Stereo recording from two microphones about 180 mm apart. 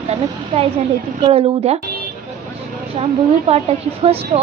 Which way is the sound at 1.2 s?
35° right (ahead or behind).